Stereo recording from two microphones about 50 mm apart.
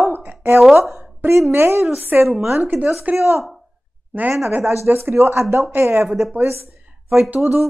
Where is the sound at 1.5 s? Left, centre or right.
Right.